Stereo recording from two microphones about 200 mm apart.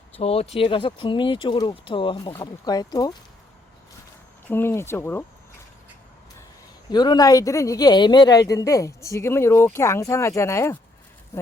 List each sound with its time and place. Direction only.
0.2 s speech: 30° left (ahead or behind)
4.4 s speech: 10° left (ahead or behind)
6.9 s speech: 20° left (ahead or behind)